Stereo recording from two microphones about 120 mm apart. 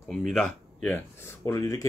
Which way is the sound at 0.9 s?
25° left (ahead or behind).